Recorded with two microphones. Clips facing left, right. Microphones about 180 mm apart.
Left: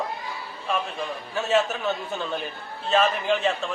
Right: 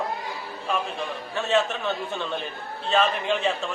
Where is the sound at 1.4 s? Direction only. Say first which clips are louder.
Left 1 dB; 5° left (ahead or behind).